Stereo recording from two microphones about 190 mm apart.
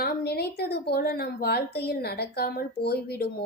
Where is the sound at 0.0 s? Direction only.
55° left (ahead or behind).